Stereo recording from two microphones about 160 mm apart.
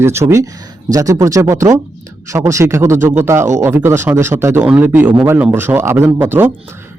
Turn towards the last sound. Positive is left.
turn(degrees=-15)  # may be behind; listen again after turning